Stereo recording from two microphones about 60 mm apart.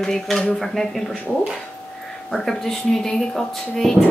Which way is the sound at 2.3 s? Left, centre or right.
Centre.